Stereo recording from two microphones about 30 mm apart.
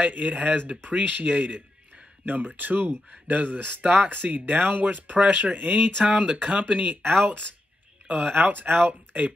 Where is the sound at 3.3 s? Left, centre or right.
Right.